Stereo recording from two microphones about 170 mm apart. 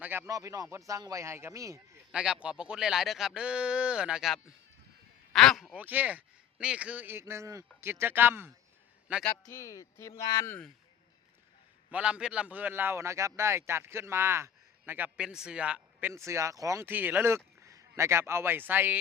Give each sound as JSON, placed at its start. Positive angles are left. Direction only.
{"t": 0.0, "sound": "speech", "side_deg": -15}
{"t": 2.1, "sound": "speech", "side_deg": -5}
{"t": 5.8, "sound": "a man's voice", "side_deg": -10}
{"t": 9.4, "sound": "speech", "side_deg": 15}
{"t": 11.9, "sound": "a man's voice", "side_deg": -5}